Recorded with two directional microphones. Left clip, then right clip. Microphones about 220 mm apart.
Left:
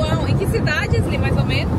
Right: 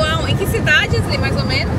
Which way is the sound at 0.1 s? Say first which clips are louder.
Right 3 dB; 5° left (ahead or behind).